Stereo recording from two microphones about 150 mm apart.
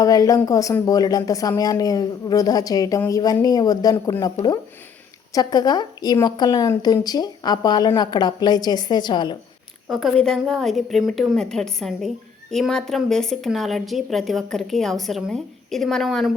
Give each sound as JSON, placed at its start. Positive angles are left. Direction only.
{"t": 0.0, "sound": "speech", "side_deg": 25}
{"t": 5.3, "sound": "speech", "side_deg": 25}
{"t": 9.9, "sound": "a woman's voice", "side_deg": 0}